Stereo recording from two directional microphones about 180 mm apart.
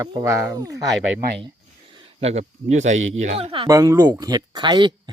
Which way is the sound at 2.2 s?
40° right (ahead or behind).